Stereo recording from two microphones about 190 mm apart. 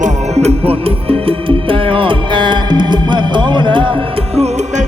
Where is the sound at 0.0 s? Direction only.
35° right (ahead or behind).